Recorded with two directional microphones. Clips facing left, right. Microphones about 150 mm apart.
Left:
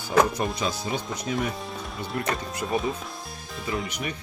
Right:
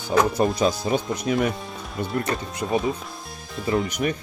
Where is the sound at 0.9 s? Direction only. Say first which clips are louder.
Right 6 dB; 60° right (ahead or behind).